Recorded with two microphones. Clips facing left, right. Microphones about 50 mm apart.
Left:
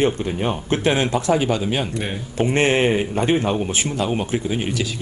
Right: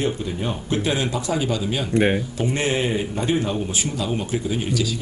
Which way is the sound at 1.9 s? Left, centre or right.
Right.